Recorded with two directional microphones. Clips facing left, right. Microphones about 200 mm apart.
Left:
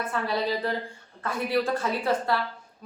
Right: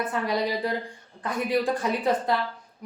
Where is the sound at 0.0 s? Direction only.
15° right (ahead or behind).